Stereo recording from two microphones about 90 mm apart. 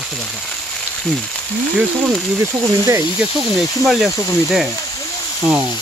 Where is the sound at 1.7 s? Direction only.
10° right (ahead or behind).